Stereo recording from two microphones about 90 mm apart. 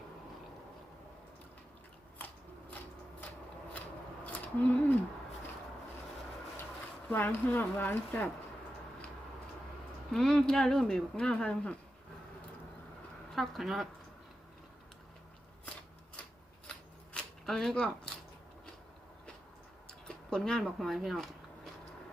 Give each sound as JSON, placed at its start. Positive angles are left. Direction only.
{"t": 2.1, "sound": "biting", "side_deg": 20}
{"t": 3.8, "sound": "scissors", "side_deg": 20}
{"t": 7.1, "sound": "speech", "side_deg": 20}
{"t": 10.1, "sound": "speech", "side_deg": 5}
{"t": 13.3, "sound": "speech", "side_deg": 0}
{"t": 17.4, "sound": "speech", "side_deg": 5}
{"t": 19.9, "sound": "a sound", "side_deg": 5}